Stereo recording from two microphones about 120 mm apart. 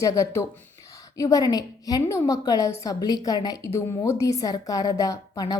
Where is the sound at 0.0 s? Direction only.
25° left (ahead or behind).